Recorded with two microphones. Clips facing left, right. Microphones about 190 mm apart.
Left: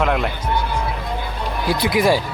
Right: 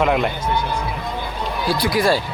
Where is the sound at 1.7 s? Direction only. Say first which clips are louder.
Left 1 dB; 20° left (ahead or behind).